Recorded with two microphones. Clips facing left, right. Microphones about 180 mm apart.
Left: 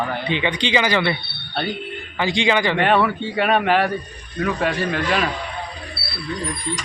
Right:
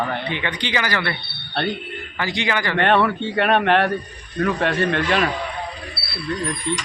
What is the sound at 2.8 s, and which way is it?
A man's voice, 5° left (ahead or behind).